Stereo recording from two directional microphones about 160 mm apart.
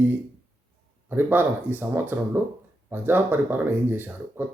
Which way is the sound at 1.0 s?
15° right (ahead or behind).